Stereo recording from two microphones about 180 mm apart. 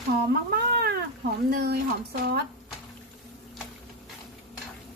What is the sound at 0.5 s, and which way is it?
Cat, 55° right (ahead or behind).